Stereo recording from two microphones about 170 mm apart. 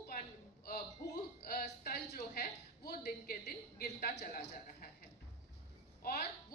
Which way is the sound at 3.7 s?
65° left (ahead or behind).